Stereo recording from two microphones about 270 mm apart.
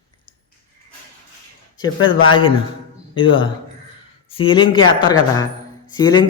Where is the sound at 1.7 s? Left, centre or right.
Centre.